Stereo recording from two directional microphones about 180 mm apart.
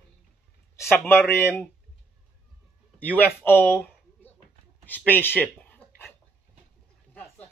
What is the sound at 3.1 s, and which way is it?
Speech, 10° left (ahead or behind).